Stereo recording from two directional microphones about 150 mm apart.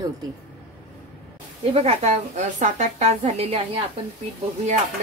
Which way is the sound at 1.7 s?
45° right (ahead or behind).